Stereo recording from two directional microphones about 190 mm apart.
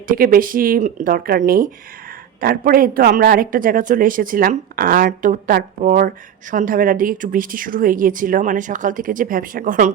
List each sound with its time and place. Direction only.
0.1 s speech: 50° right (ahead or behind)